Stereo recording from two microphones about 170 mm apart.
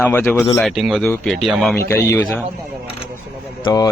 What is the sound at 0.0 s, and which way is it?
Speech, 15° left (ahead or behind).